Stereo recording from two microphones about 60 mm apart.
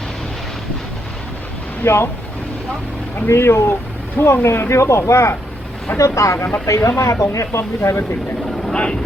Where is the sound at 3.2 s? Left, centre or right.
Left.